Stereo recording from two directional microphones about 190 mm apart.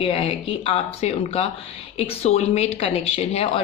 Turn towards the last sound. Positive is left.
turn(degrees=30)  # may be behind; listen again after turning